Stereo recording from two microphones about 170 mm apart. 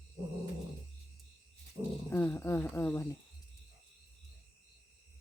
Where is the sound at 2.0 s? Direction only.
15° left (ahead or behind).